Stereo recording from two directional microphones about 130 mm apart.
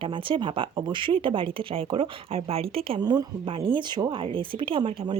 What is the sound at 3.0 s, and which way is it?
Speech, 30° right (ahead or behind).